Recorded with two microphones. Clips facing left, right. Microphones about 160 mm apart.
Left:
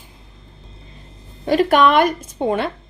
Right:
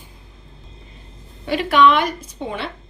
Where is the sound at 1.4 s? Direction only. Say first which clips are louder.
Left 2 dB; 40° left (ahead or behind).